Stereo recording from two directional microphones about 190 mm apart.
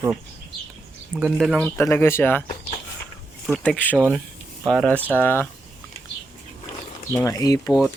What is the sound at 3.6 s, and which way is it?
Speech, 5° left (ahead or behind).